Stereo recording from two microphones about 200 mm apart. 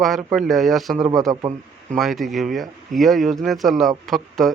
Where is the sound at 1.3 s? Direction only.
20° right (ahead or behind).